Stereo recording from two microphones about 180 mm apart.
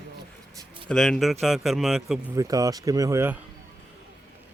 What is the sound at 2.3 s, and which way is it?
Speech, 20° right (ahead or behind).